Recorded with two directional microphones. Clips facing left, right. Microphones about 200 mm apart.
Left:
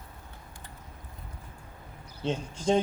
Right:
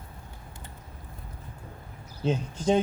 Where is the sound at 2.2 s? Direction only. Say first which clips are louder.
Right 3 dB; 5° right (ahead or behind).